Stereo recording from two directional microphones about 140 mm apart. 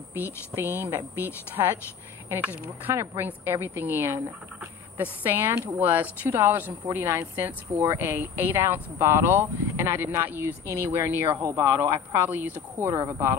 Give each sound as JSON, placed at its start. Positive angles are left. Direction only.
{"t": 0.1, "sound": "speech", "side_deg": -15}